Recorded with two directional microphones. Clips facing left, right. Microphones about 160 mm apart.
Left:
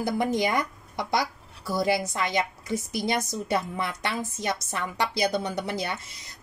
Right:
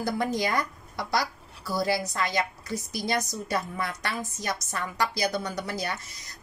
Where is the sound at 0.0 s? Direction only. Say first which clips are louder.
Left 2 dB; 20° left (ahead or behind).